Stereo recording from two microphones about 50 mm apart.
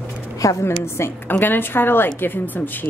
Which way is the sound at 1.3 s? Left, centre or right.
Left.